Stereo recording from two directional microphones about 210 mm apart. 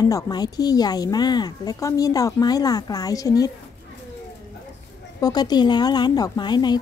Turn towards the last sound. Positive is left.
turn(degrees=20)  # may be behind; listen again after turning